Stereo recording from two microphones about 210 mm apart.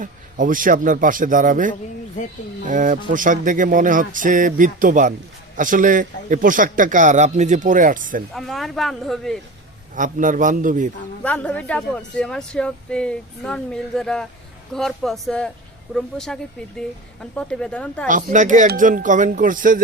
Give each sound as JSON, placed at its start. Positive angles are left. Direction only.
{"t": 0.0, "sound": "a man's voice", "side_deg": -40}
{"t": 8.3, "sound": "speech", "side_deg": 0}
{"t": 9.9, "sound": "a man's voice", "side_deg": -40}
{"t": 11.2, "sound": "speech", "side_deg": 5}
{"t": 18.1, "sound": "a man's voice", "side_deg": -40}